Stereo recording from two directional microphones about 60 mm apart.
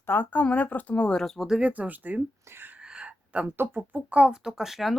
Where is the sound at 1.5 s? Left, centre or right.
Right.